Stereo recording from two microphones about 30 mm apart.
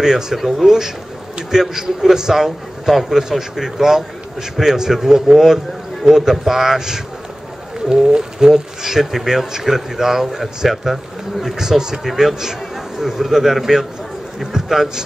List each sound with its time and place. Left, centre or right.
0.0 s a man's voice: centre
7.9 s a man's voice: right
12.0 s a man's voice: centre